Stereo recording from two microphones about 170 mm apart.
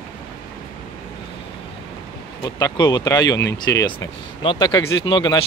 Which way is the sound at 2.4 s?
20° left (ahead or behind).